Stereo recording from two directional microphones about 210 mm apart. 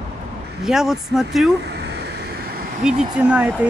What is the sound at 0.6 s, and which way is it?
Speech, centre (ahead or behind).